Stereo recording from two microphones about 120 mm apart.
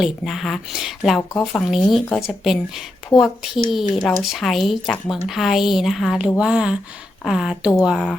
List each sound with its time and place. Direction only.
0.0 s speech: centre (ahead or behind)